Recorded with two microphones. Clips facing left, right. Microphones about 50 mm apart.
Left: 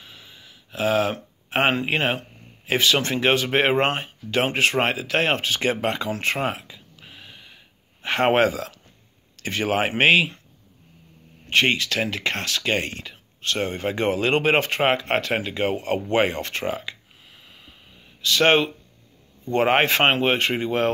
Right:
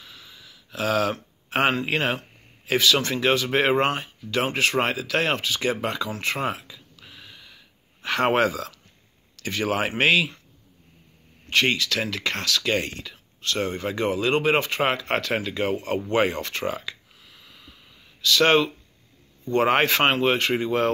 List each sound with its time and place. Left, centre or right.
0.0 s speech: left
11.4 s speech: left
17.5 s a sound: left
18.2 s speech: left